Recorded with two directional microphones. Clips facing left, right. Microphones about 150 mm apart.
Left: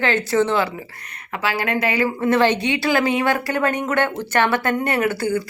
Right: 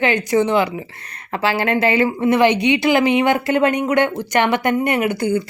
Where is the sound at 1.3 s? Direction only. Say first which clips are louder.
Right 4 dB; 30° right (ahead or behind).